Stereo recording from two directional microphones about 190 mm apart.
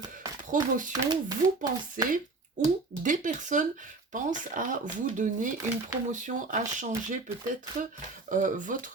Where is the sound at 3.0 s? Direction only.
40° right (ahead or behind).